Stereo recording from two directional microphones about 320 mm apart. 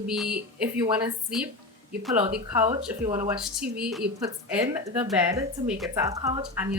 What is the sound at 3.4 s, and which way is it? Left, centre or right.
A woman's voice, centre.